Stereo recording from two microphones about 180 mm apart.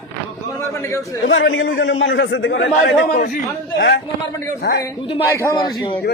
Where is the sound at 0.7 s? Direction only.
15° left (ahead or behind).